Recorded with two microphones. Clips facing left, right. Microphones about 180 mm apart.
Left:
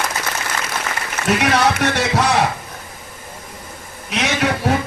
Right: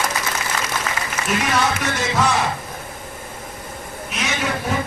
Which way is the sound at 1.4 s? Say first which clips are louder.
Left 4 dB; 70° left (ahead or behind).